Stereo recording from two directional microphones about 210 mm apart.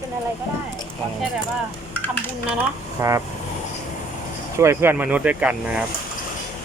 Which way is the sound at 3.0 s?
15° right (ahead or behind).